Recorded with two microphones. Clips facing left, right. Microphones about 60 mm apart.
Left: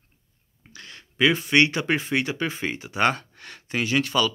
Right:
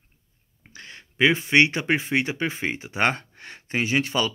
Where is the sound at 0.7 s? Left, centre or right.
Right.